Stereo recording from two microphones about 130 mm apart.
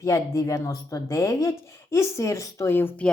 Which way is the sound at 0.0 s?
25° left (ahead or behind).